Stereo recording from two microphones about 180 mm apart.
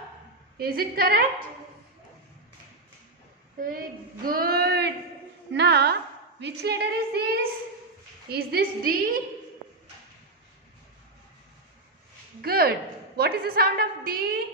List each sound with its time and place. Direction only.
0.6 s a woman's voice: 55° right (ahead or behind)
3.5 s a woman's voice: 50° right (ahead or behind)
12.4 s a woman's voice: 60° right (ahead or behind)